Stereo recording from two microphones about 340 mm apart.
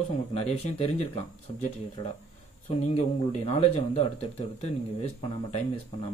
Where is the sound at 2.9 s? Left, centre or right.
Centre.